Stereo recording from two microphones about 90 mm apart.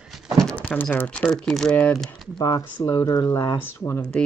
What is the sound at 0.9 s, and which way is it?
Speech, 15° left (ahead or behind).